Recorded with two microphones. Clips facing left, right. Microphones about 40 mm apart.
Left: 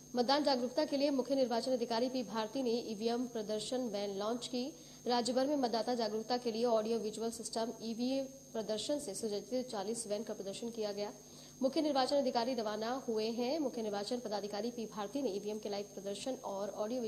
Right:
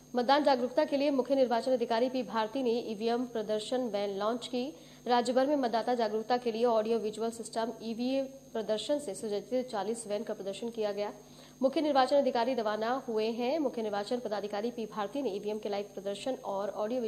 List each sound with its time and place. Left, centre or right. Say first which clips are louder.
0.1 s a woman's voice: right 6 dB; right